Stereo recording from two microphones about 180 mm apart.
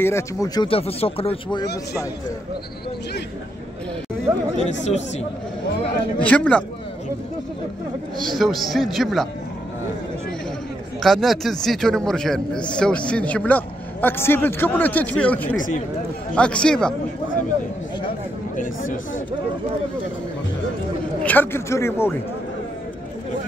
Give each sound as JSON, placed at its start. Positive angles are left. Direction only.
{"t": 0.0, "sound": "speech", "side_deg": 15}
{"t": 0.7, "sound": "speech", "side_deg": 30}
{"t": 4.3, "sound": "speech", "side_deg": -15}
{"t": 6.1, "sound": "speech", "side_deg": 5}
{"t": 8.2, "sound": "a man's voice", "side_deg": 0}
{"t": 11.0, "sound": "a man's voice", "side_deg": 0}
{"t": 21.2, "sound": "speech", "side_deg": 10}